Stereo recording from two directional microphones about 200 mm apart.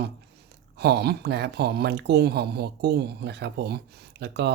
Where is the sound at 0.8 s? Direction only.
55° right (ahead or behind).